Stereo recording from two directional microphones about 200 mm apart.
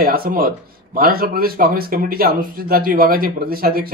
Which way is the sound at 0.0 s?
45° right (ahead or behind).